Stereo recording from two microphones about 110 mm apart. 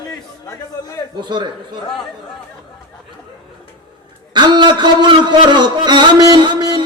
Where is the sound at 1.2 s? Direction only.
45° right (ahead or behind).